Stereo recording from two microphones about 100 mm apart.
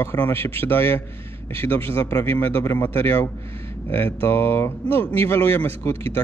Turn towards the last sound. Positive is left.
turn(degrees=25)  # may be behind; listen again after turning